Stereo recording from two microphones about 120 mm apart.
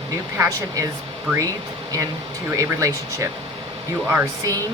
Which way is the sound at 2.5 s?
25° right (ahead or behind).